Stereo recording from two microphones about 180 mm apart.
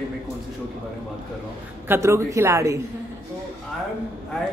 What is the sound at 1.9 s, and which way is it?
Speech, 15° right (ahead or behind).